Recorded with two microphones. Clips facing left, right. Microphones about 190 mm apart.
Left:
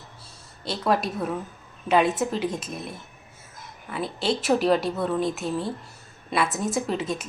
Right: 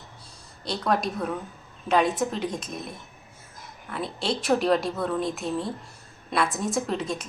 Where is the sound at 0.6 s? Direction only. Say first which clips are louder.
Left 1 dB; 5° left (ahead or behind).